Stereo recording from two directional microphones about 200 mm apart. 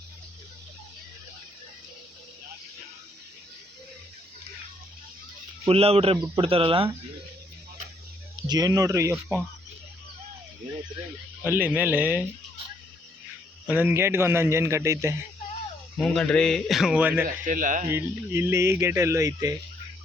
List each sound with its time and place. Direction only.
5.6 s speech: 30° right (ahead or behind)
8.4 s speech: 20° right (ahead or behind)
11.4 s speech: 10° right (ahead or behind)
13.7 s speech: 10° right (ahead or behind)
16.0 s a man's voice: 5° left (ahead or behind)
17.2 s speech: 40° right (ahead or behind)
17.8 s speech: 15° right (ahead or behind)